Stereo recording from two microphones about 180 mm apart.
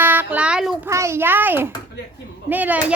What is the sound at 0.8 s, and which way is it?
A child's voice, 15° right (ahead or behind).